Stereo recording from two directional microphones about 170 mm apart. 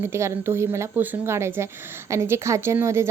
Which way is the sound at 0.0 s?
15° right (ahead or behind).